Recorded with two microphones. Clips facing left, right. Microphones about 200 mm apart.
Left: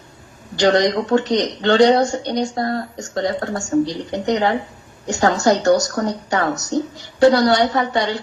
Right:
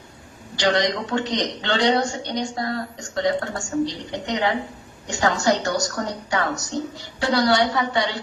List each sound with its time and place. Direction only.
0.6 s a woman's voice: 45° left (ahead or behind)